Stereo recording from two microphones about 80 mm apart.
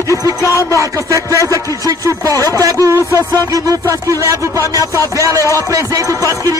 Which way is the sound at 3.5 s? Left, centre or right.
Right.